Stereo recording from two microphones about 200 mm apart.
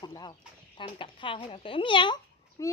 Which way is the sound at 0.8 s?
25° left (ahead or behind).